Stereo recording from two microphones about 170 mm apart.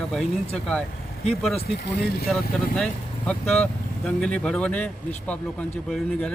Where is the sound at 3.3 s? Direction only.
5° left (ahead or behind).